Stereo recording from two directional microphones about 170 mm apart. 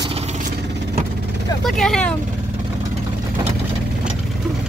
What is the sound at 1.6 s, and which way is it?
Speech, 5° left (ahead or behind).